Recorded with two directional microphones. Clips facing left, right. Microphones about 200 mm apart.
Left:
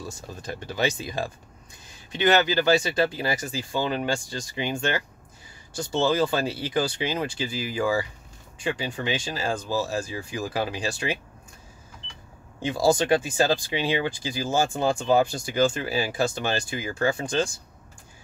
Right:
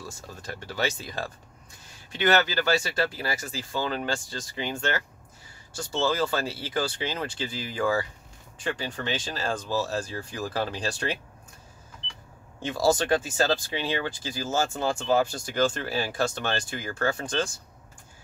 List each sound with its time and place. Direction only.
0.3 s speech: 20° left (ahead or behind)
12.6 s speech: 15° left (ahead or behind)